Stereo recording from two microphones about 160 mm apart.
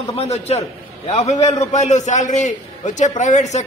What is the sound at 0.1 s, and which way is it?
A man's voice, 40° left (ahead or behind).